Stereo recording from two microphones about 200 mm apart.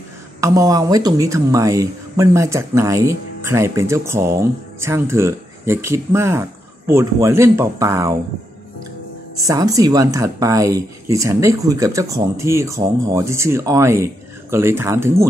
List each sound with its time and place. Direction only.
0.4 s speech: 15° right (ahead or behind)
9.5 s speech: 15° right (ahead or behind)